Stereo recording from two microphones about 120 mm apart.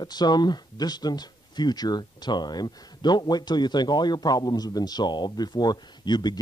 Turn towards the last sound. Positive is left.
turn(degrees=35)  # may be behind; listen again after turning